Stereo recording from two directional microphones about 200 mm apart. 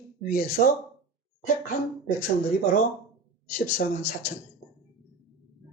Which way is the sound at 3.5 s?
45° left (ahead or behind).